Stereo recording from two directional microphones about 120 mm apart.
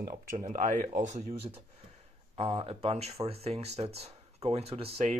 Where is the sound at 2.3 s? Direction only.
60° right (ahead or behind).